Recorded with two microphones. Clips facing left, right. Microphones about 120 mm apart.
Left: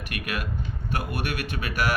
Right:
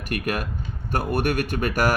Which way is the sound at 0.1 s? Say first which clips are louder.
Right 6 dB; 45° right (ahead or behind).